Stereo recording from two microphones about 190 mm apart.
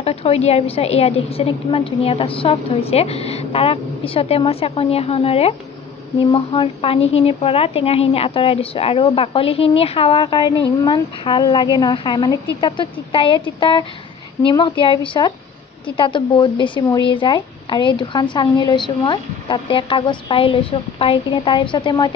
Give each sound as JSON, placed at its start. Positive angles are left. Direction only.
{"t": 0.0, "sound": "a woman's voice", "side_deg": 30}